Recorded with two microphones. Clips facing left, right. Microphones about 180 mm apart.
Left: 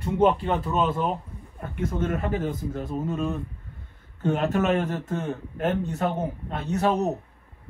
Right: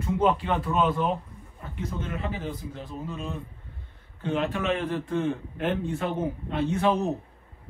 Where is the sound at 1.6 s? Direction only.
55° left (ahead or behind).